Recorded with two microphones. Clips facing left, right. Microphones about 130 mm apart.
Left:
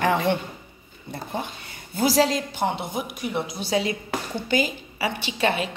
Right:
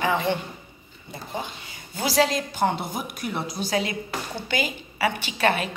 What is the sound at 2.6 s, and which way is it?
Speech, 15° left (ahead or behind).